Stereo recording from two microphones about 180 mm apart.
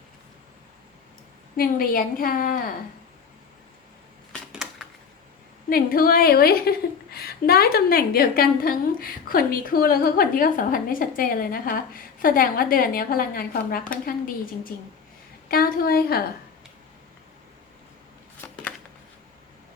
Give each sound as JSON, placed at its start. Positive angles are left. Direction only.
{"t": 1.5, "sound": "a woman's voice", "side_deg": 50}
{"t": 4.3, "sound": "a sound", "side_deg": 0}
{"t": 5.6, "sound": "a woman's voice", "side_deg": 55}